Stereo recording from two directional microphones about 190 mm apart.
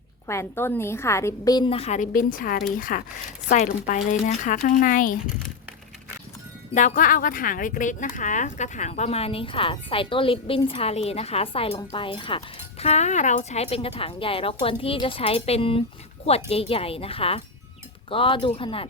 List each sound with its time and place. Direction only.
0.3 s a woman's voice: 15° left (ahead or behind); by 5.1 s 45° left (ahead or behind)
6.7 s a woman's voice: 45° left (ahead or behind)